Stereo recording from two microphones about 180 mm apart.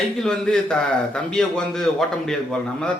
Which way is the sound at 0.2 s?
5° left (ahead or behind).